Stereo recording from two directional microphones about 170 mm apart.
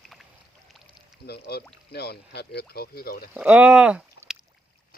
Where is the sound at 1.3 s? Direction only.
70° left (ahead or behind).